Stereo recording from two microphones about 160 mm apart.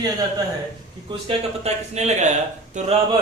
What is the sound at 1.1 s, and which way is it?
Speech, 35° right (ahead or behind).